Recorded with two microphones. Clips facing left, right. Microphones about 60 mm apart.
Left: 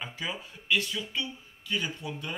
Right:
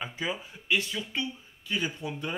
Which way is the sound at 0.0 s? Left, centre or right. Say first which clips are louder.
Right 3 dB; centre.